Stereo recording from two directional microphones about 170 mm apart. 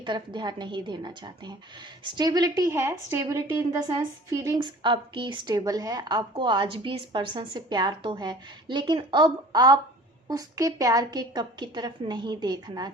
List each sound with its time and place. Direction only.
0.0 s a woman's voice: 25° right (ahead or behind)